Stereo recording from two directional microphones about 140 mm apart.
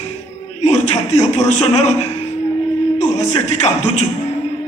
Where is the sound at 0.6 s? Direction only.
50° left (ahead or behind).